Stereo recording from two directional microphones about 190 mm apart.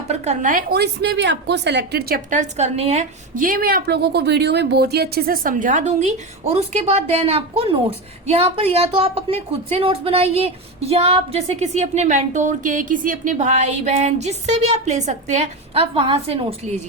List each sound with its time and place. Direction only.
0.1 s a woman's voice: 40° right (ahead or behind)